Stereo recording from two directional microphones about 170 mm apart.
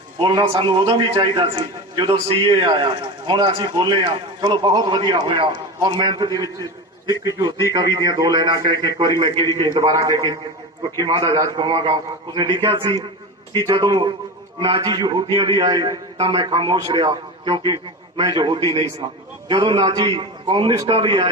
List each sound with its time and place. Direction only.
0.2 s a man's voice: 25° right (ahead or behind)